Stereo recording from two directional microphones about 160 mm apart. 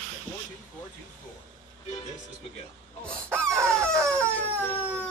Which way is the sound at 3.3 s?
15° right (ahead or behind).